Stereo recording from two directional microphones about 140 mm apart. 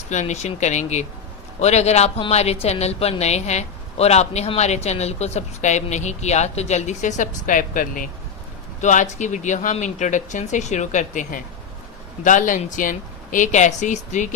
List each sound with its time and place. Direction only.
0.1 s speech: 55° left (ahead or behind); by 8.0 s 75° left (ahead or behind)
8.8 s speech: 60° left (ahead or behind)